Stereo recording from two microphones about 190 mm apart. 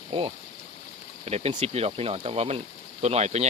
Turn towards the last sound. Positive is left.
turn(degrees=-35)  # may be behind; listen again after turning